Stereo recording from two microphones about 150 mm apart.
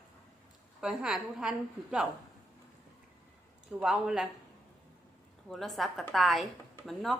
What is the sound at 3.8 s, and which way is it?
Speech, 5° right (ahead or behind).